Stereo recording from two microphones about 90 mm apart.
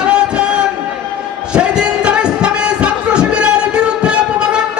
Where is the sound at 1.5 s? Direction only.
10° right (ahead or behind).